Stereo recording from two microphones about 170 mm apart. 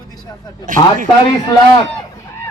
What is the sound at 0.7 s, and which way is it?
Speech, 50° right (ahead or behind).